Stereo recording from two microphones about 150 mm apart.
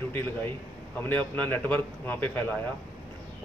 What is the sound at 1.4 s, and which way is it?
Speech, 10° left (ahead or behind).